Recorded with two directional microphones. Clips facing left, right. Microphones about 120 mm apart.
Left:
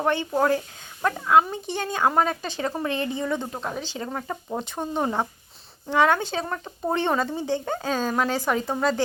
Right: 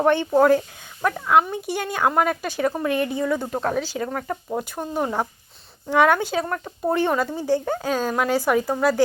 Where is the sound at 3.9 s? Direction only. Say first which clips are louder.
Right 4 dB; 10° left (ahead or behind).